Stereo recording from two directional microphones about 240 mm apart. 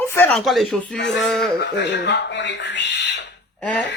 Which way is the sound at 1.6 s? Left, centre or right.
Left.